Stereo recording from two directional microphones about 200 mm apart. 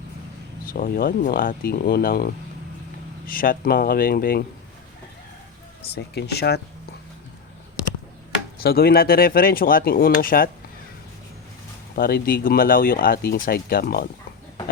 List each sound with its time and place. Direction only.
0.7 s speech: 45° left (ahead or behind)
5.9 s speech: 55° left (ahead or behind)
8.6 s speech: 50° left (ahead or behind)
11.9 s speech: 50° left (ahead or behind)